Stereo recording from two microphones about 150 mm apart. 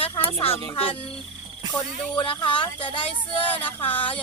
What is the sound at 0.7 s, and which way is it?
Speech, 40° left (ahead or behind).